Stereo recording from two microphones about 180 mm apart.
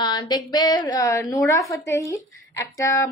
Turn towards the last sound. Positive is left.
turn(degrees=15)  # may be behind; listen again after turning